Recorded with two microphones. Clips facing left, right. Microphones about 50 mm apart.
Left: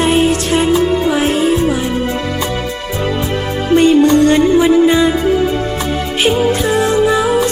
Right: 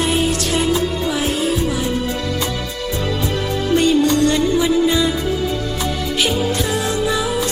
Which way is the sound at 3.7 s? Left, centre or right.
Left.